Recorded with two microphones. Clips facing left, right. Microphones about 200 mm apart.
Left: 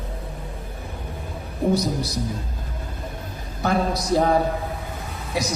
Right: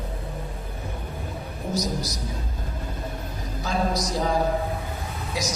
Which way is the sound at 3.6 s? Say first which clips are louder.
Left 3 dB; 60° left (ahead or behind).